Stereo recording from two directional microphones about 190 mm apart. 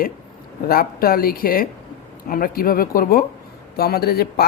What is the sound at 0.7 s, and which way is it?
Speech, 50° left (ahead or behind).